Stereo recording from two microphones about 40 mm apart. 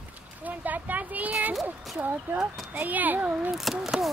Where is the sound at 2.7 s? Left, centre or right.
Right.